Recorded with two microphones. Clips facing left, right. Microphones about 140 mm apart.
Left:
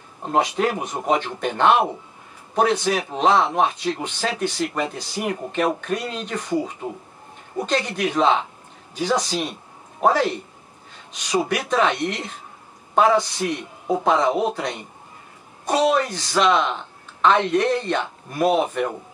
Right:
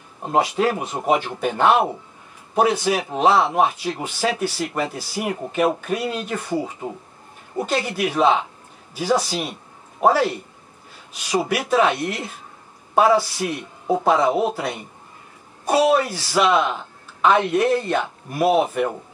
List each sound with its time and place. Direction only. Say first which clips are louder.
0.2 s speech: right 1 dB; 10° right (ahead or behind)
11.3 s speech: right 2 dB; 10° right (ahead or behind)